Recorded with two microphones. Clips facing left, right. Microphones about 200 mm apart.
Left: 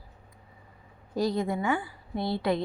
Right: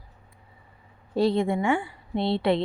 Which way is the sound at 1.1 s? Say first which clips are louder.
Right 5 dB; 30° right (ahead or behind).